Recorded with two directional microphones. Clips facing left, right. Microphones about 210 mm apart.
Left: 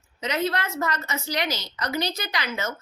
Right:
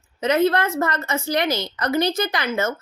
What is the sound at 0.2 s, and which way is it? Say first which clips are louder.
A woman's voice: right 8 dB; 55° right (ahead or behind).